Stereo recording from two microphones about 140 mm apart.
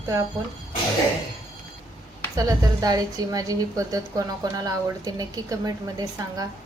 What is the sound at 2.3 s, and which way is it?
A woman's voice, 25° right (ahead or behind).